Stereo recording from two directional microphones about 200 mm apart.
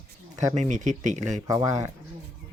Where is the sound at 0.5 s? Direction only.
35° right (ahead or behind).